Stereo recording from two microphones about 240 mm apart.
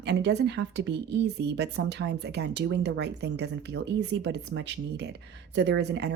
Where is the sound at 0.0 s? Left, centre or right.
Right.